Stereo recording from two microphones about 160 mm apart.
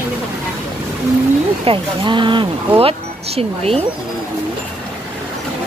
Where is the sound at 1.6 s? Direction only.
30° right (ahead or behind).